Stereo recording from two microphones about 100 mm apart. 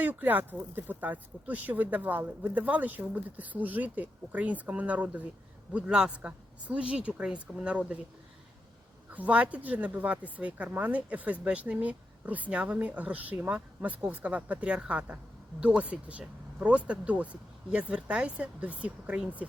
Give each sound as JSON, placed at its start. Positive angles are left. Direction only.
{"t": 0.0, "sound": "speech", "side_deg": -15}
{"t": 9.1, "sound": "speech", "side_deg": -15}